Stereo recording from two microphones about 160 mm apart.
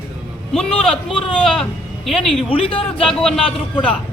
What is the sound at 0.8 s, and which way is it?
A woman's voice, 5° left (ahead or behind).